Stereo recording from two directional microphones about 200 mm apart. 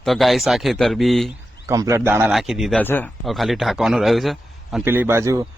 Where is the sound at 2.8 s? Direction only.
10° left (ahead or behind).